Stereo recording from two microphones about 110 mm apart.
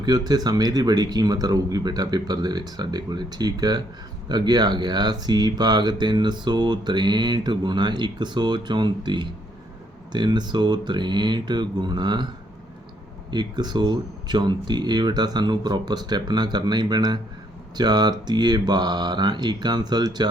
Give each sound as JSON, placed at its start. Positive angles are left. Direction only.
{"t": 0.0, "sound": "speech", "side_deg": -40}
{"t": 13.3, "sound": "speech", "side_deg": -40}